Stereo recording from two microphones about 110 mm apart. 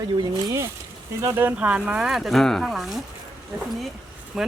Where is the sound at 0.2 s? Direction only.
40° right (ahead or behind).